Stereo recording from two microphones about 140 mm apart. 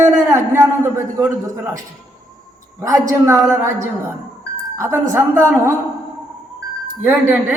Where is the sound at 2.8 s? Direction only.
20° right (ahead or behind).